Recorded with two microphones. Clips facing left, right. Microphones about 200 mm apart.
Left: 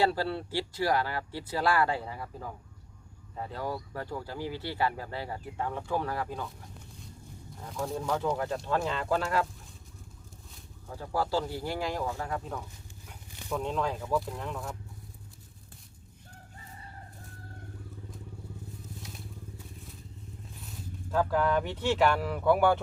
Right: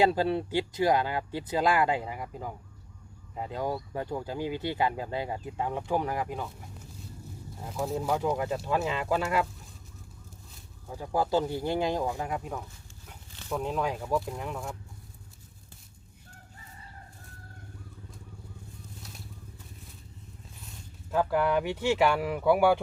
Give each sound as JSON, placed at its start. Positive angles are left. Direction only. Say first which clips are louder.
{"t": 0.0, "sound": "speech", "louder": "right 4 dB", "side_deg": -15}
{"t": 7.6, "sound": "speech", "louder": "right 2 dB", "side_deg": -5}
{"t": 11.0, "sound": "speech", "louder": "right 3 dB", "side_deg": -20}
{"t": 21.1, "sound": "speech", "louder": "right 1 dB", "side_deg": -10}